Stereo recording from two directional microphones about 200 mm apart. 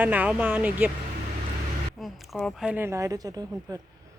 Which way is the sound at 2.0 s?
Centre (ahead or behind).